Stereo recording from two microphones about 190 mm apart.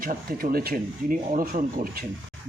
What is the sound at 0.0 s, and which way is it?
Speech, 50° right (ahead or behind).